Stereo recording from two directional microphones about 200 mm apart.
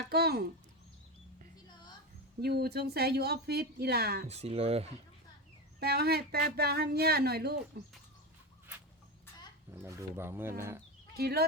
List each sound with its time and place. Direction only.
0.1 s a sound: 55° right (ahead or behind)
2.4 s a woman's voice: 55° right (ahead or behind)
4.3 s speech: 30° right (ahead or behind)
5.8 s a woman's voice: 50° right (ahead or behind)
9.7 s speech: 15° right (ahead or behind)
11.2 s a woman's voice: 50° right (ahead or behind)